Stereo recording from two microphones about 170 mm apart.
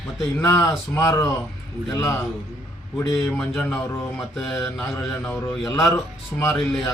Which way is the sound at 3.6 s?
5° left (ahead or behind).